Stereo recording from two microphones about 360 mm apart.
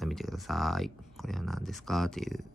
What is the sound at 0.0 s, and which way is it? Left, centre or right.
Speech, centre.